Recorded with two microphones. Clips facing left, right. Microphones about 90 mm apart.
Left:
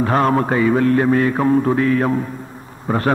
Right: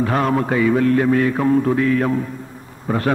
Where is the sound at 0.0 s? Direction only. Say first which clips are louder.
Left 2 dB; 40° left (ahead or behind).